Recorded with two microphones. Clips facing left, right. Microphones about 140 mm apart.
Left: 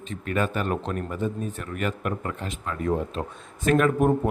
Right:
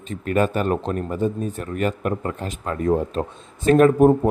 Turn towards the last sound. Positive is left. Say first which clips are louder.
# right 7 dB
turn(degrees=-40)  # may be behind; listen again after turning